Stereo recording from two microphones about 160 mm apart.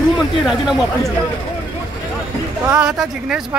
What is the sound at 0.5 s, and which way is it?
Speech, centre (ahead or behind).